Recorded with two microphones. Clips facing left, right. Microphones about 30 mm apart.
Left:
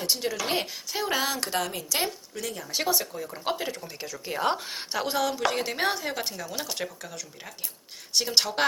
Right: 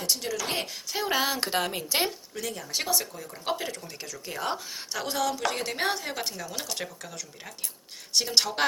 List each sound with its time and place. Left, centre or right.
0.0 s speech: centre
0.5 s a woman's voice: centre
1.4 s a woman's voice: right
2.3 s a woman's voice: centre
4.5 s a woman's voice: left
4.9 s a woman's voice: centre